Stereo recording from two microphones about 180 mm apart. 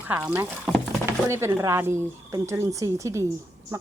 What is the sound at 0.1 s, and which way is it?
Speech, 10° right (ahead or behind).